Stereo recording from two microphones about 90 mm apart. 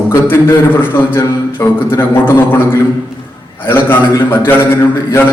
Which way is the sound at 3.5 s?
25° left (ahead or behind).